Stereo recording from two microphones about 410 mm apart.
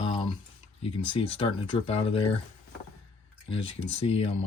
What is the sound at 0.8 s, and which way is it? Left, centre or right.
Speech, centre.